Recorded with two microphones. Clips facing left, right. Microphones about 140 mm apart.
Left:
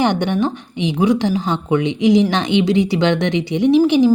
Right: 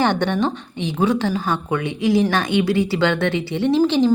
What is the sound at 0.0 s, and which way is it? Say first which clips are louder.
Speech: left 2 dB; 15° left (ahead or behind).